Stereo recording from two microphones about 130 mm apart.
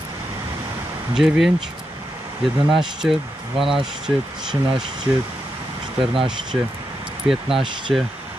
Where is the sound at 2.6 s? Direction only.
5° right (ahead or behind).